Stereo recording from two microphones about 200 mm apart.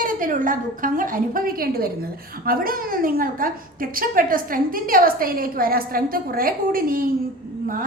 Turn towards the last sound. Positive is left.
turn(degrees=-45)  # may be behind; listen again after turning